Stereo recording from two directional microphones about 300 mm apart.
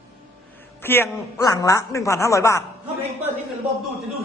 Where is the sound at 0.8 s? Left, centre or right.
Centre.